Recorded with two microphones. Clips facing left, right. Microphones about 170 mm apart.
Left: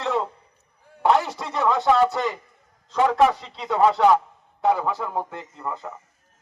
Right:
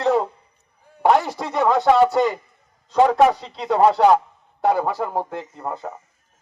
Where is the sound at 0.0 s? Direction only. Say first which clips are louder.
Right 6 dB; 40° right (ahead or behind).